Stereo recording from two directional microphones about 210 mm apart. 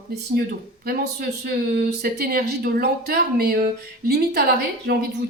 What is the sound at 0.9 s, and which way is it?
Speech, 45° right (ahead or behind).